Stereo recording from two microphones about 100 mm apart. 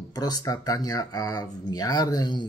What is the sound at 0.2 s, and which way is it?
Speech, 40° left (ahead or behind).